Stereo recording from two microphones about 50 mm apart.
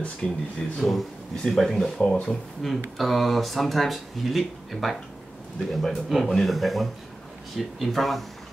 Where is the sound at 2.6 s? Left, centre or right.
Centre.